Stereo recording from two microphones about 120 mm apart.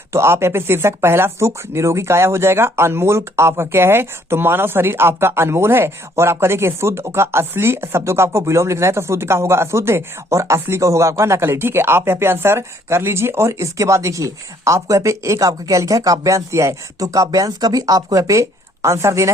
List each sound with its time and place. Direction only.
0.1 s speech: 20° right (ahead or behind)